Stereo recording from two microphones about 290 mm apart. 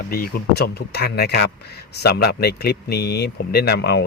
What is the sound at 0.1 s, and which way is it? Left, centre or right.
A man's voice, left.